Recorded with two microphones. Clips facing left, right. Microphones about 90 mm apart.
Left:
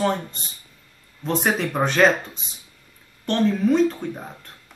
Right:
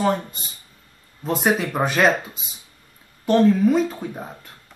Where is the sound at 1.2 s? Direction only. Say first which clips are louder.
Right 2 dB; 5° right (ahead or behind).